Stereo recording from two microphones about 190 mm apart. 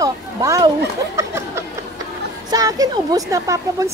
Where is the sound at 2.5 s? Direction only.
20° right (ahead or behind).